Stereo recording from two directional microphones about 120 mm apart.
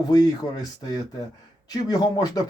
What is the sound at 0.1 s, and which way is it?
Speech, 35° left (ahead or behind).